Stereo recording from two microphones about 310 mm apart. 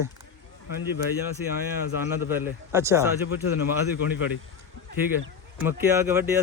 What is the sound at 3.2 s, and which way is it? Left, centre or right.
Speech, left.